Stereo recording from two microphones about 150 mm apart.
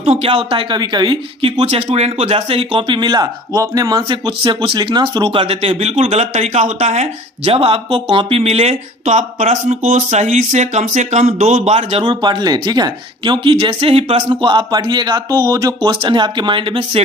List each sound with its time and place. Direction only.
0.0 s speech: 40° right (ahead or behind)
12.0 s speech: 30° right (ahead or behind)